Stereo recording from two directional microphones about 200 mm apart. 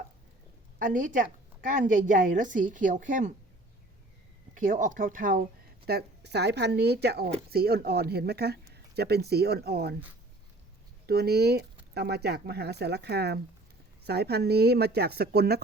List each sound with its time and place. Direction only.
0.8 s a woman's voice: 45° right (ahead or behind)
4.5 s a woman's voice: 40° right (ahead or behind)
11.0 s speech: 50° right (ahead or behind)